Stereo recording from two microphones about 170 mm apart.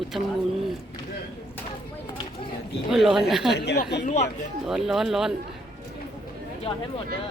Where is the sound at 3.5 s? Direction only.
75° left (ahead or behind).